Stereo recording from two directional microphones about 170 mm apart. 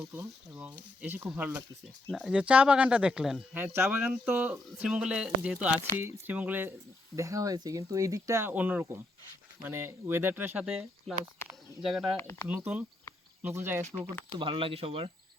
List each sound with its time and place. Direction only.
0.1 s speech: 5° right (ahead or behind)
12.1 s speech: 15° left (ahead or behind)
12.5 s speech: 10° right (ahead or behind)
14.3 s speech: 30° right (ahead or behind)